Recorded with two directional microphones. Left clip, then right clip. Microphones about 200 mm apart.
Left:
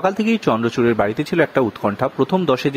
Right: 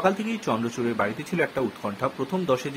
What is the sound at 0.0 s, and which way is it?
Speech, 40° left (ahead or behind).